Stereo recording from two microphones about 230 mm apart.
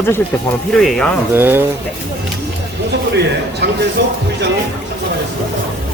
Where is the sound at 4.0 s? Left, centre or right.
Right.